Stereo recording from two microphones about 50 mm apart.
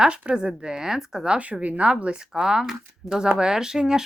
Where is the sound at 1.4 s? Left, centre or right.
Right.